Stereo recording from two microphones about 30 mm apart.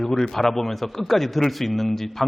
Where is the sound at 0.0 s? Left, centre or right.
Centre.